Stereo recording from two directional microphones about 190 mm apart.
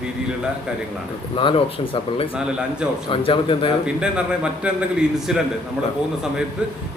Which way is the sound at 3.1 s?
25° left (ahead or behind).